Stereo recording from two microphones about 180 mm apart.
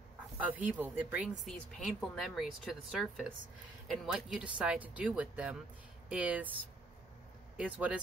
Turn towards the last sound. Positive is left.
turn(degrees=-10)  # may be behind; listen again after turning